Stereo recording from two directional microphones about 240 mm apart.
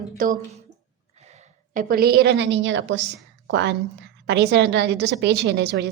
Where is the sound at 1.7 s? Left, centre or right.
Right.